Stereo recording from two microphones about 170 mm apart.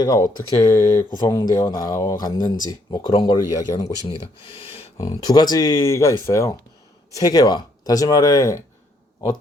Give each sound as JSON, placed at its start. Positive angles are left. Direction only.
{"t": 0.0, "sound": "speech", "side_deg": 20}
{"t": 4.4, "sound": "speech", "side_deg": 35}
{"t": 4.9, "sound": "speech", "side_deg": 20}